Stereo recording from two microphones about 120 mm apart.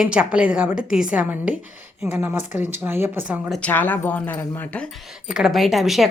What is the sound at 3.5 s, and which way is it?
Speech, 10° left (ahead or behind).